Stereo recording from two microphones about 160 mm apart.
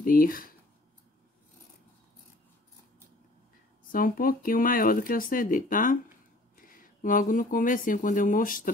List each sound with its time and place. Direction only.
0.0 s speech: 60° left (ahead or behind)
3.9 s speech: 60° left (ahead or behind)